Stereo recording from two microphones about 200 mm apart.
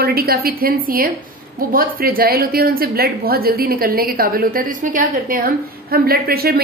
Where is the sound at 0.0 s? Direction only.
50° right (ahead or behind).